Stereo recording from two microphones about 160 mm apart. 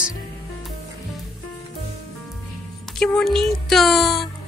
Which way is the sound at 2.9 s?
5° left (ahead or behind).